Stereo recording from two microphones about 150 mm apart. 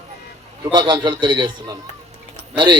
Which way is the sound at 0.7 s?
30° right (ahead or behind).